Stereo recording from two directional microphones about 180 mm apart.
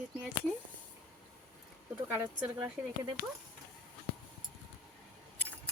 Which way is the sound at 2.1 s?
10° right (ahead or behind).